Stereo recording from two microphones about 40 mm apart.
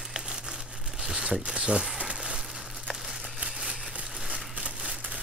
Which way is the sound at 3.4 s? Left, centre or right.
Centre.